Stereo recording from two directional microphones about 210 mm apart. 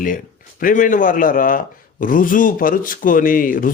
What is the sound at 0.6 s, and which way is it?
Speech, 40° left (ahead or behind).